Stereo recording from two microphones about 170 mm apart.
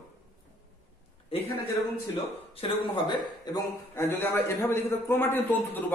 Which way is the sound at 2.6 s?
30° left (ahead or behind).